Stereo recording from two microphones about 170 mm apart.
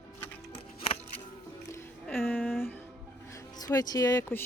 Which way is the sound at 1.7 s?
10° left (ahead or behind).